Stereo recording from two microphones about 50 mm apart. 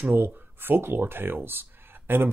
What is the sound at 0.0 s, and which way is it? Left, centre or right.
Speech, right.